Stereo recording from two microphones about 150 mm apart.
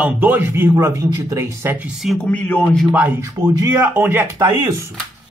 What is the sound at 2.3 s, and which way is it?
Speech, 10° left (ahead or behind).